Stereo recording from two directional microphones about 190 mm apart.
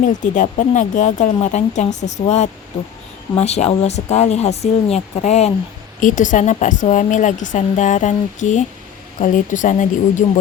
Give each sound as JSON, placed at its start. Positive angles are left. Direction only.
{"t": 0.0, "sound": "a woman's voice", "side_deg": 40}